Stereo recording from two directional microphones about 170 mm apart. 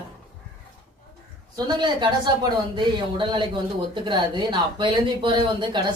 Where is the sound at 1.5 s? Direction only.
25° right (ahead or behind).